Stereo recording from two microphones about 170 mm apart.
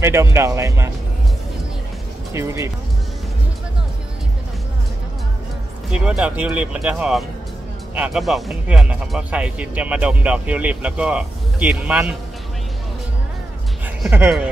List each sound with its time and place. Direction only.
0.0 s speech: 15° right (ahead or behind)
2.3 s speech: 15° right (ahead or behind)
5.9 s speech: 5° right (ahead or behind)